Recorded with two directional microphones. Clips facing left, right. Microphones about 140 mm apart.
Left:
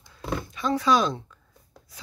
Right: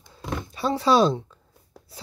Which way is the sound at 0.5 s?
30° right (ahead or behind).